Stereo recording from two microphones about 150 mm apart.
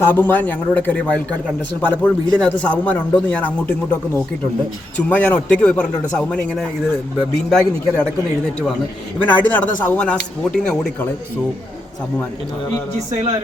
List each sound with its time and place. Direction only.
0.1 s a man's voice: 15° left (ahead or behind)
4.9 s a man's voice: 10° left (ahead or behind)
9.1 s a man's voice: 10° left (ahead or behind)